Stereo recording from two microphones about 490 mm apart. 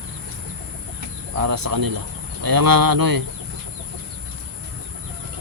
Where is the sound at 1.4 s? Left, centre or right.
Right.